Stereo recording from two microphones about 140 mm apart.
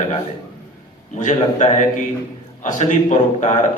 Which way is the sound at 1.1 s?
65° left (ahead or behind).